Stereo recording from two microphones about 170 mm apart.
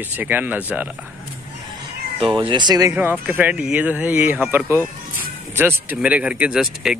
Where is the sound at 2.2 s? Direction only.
30° right (ahead or behind).